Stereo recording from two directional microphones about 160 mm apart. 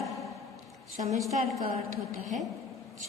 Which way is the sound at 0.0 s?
Centre (ahead or behind).